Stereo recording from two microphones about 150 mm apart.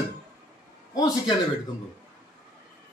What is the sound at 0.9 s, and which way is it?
Speech, 25° left (ahead or behind).